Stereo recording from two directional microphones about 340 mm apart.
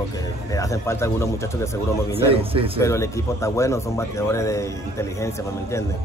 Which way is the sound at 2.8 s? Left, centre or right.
Centre.